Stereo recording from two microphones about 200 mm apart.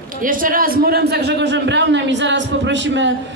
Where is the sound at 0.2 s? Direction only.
45° right (ahead or behind).